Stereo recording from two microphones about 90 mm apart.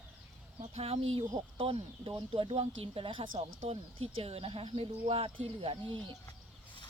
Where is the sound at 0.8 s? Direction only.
90° right.